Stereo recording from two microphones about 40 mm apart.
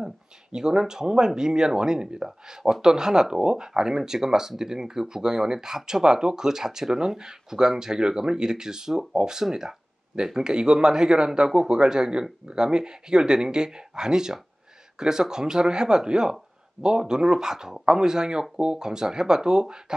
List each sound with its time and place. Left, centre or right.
0.0 s speech: centre